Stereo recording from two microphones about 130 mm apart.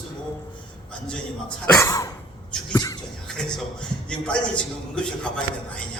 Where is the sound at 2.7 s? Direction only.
25° left (ahead or behind).